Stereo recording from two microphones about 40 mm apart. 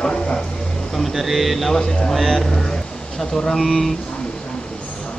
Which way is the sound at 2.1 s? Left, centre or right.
Centre.